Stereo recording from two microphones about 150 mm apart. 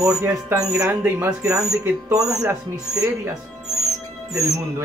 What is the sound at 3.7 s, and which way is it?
Music, centre (ahead or behind).